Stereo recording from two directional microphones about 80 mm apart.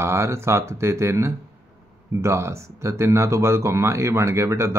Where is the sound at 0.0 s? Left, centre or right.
Right.